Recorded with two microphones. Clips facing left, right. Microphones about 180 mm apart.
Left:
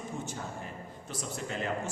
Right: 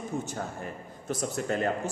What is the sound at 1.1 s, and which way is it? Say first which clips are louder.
Speech: right 8 dB; 45° right (ahead or behind).